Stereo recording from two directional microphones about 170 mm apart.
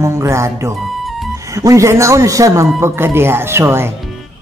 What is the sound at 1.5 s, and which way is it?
A man's voice, 20° right (ahead or behind).